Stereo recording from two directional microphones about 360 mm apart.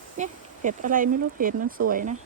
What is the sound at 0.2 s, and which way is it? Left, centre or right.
Speech, right.